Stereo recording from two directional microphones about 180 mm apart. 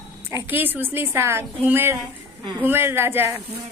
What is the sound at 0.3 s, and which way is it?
A woman's voice, 10° right (ahead or behind).